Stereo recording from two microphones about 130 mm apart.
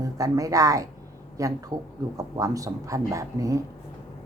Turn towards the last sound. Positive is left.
turn(degrees=-25)  # may be behind; listen again after turning